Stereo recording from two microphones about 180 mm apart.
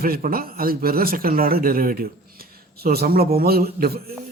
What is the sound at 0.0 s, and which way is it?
Speech, 55° right (ahead or behind).